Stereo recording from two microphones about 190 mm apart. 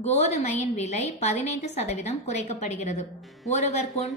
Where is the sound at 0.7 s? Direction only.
35° left (ahead or behind).